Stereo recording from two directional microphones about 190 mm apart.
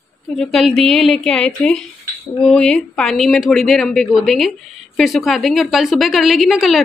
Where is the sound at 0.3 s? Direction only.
Centre (ahead or behind).